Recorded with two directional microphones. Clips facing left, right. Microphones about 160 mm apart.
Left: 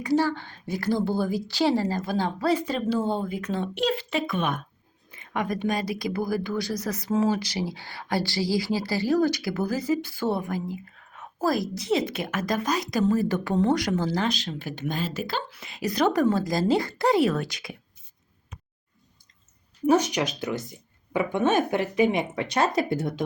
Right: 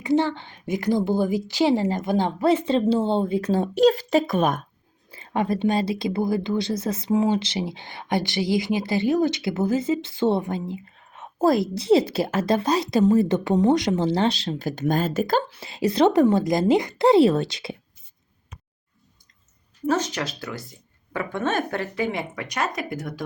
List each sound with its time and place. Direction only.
0.0 s speech: 25° right (ahead or behind); by 15.4 s 45° right (ahead or behind)
15.4 s speech: 30° right (ahead or behind)
19.9 s speech: 15° left (ahead or behind)